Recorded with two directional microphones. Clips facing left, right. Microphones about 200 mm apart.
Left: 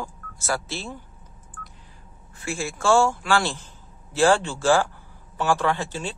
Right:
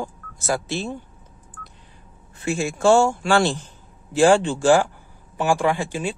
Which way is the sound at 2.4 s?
20° right (ahead or behind).